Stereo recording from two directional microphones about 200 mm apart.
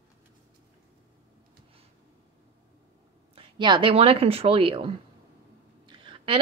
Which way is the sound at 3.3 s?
25° right (ahead or behind).